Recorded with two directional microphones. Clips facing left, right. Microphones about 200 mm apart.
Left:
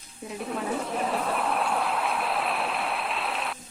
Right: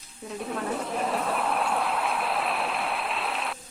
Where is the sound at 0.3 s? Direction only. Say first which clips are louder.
Even; centre (ahead or behind).